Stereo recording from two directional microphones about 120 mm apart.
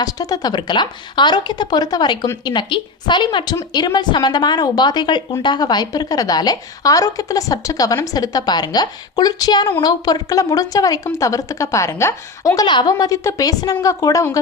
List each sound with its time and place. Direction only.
0.0 s a woman's voice: 30° left (ahead or behind)
12.6 s a woman's voice: 35° left (ahead or behind)